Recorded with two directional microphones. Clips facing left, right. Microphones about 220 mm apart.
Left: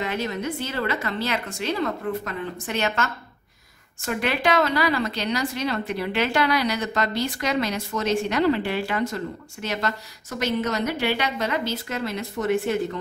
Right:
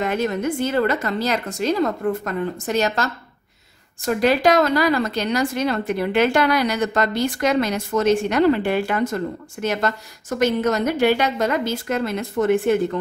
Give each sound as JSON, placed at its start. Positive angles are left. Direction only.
{"t": 0.0, "sound": "speech", "side_deg": -50}